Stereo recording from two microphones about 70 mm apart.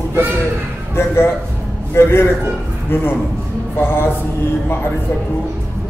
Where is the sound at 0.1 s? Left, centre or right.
Right.